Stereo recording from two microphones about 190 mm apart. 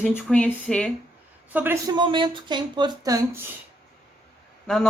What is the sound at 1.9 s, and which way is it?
Speech, 25° right (ahead or behind).